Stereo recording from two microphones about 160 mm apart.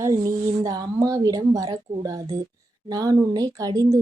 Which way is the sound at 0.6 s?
20° right (ahead or behind).